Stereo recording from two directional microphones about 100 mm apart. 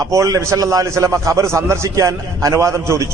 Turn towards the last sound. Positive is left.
turn(degrees=-30)  # may be behind; listen again after turning